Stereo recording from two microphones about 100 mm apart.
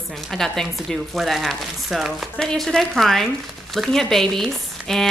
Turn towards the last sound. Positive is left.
turn(degrees=5)  # may be behind; listen again after turning